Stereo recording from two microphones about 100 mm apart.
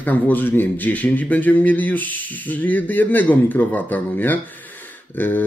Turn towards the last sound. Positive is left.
turn(degrees=20)  # may be behind; listen again after turning